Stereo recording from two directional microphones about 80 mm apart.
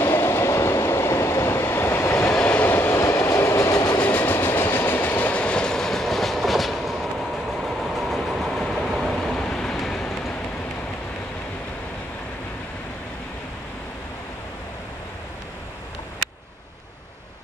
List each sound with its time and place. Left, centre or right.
0.0 s train: left
2.2 s vehicle: centre
3.0 s train: left
4.0 s train: left; by 10.3 s centre